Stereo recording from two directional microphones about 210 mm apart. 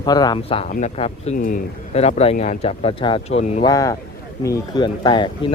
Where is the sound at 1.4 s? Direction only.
40° left (ahead or behind).